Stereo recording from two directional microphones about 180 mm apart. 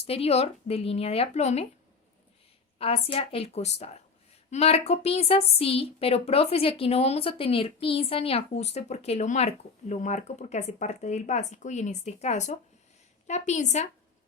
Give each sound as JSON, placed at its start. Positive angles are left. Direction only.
{"t": 0.0, "sound": "a woman's voice", "side_deg": 35}
{"t": 2.7, "sound": "a woman's voice", "side_deg": 30}